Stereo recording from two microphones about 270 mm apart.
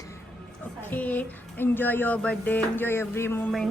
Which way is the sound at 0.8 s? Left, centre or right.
Centre.